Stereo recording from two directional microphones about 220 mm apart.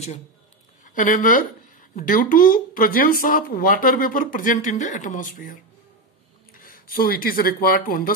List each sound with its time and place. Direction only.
0.8 s speech: 35° left (ahead or behind)